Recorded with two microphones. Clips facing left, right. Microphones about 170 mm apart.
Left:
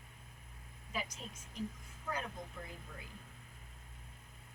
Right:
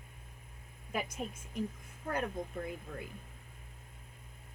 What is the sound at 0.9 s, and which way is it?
Speech, 55° right (ahead or behind).